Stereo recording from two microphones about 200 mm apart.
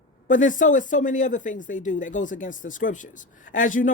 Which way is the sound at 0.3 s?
40° left (ahead or behind).